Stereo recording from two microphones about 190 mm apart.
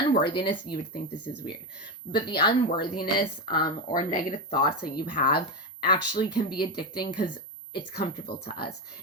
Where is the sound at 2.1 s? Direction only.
25° left (ahead or behind).